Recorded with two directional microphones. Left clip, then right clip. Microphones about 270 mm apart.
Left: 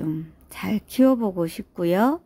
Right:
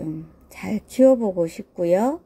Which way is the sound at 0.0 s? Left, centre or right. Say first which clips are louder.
Left 2 dB; centre.